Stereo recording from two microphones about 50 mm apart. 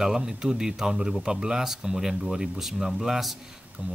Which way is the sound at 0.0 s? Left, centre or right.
Centre.